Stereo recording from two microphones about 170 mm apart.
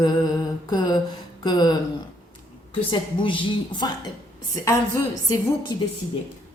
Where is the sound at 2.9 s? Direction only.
30° left (ahead or behind).